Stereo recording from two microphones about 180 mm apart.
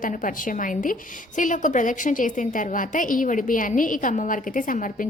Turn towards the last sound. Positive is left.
turn(degrees=50)  # may be behind; listen again after turning